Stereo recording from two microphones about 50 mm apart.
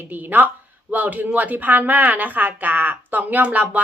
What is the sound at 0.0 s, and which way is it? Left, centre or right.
Speech, right.